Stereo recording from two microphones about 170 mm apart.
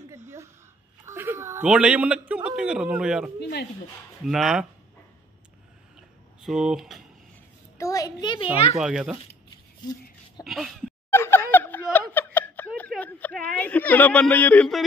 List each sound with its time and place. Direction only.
1.0 s a sound: 15° right (ahead or behind)
1.7 s a man's voice: 5° right (ahead or behind)
3.3 s speech: 75° left (ahead or behind)
4.2 s a man's voice: centre (ahead or behind)
6.4 s a man's voice: centre (ahead or behind)
7.7 s a child's voice: 20° left (ahead or behind)
8.7 s a man's voice: 5° right (ahead or behind)
10.4 s a man's voice: centre (ahead or behind)
11.1 s a sound: 15° left (ahead or behind)